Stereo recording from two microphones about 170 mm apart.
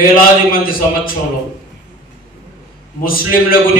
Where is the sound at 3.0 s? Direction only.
55° left (ahead or behind).